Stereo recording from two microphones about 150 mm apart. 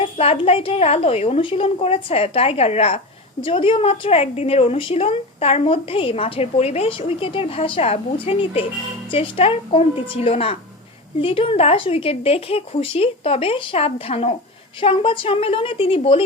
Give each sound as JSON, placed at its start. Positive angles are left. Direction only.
{"t": 0.0, "sound": "a woman's voice", "side_deg": 40}